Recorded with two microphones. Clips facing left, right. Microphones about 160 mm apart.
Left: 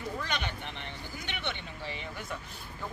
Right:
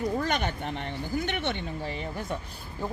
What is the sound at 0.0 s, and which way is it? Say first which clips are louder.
Speech: right 8 dB; 45° right (ahead or behind).